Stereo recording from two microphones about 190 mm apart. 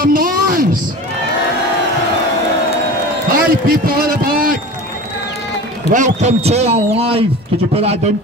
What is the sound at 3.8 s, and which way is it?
Heart sounds, 50° right (ahead or behind).